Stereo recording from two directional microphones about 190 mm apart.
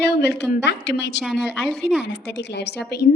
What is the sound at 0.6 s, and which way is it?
Speech, 70° left (ahead or behind).